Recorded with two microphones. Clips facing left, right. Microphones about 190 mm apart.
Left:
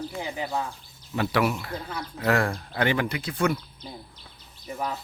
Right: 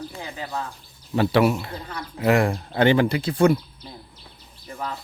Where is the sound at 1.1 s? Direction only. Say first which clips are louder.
Right 6 dB; 30° right (ahead or behind).